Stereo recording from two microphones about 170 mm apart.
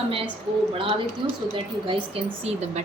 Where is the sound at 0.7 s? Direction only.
30° right (ahead or behind).